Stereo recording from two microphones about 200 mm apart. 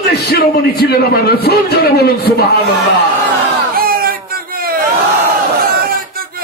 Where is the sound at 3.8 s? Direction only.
45° right (ahead or behind).